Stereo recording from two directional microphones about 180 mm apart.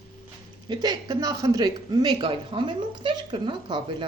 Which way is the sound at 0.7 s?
20° right (ahead or behind).